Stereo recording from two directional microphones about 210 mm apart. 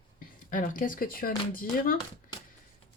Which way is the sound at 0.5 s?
40° left (ahead or behind).